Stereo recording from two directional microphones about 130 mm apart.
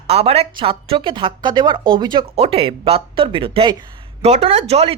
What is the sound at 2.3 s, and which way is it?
Speech, 50° right (ahead or behind).